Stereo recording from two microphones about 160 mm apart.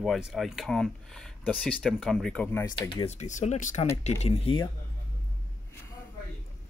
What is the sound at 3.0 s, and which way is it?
Speech, 45° left (ahead or behind).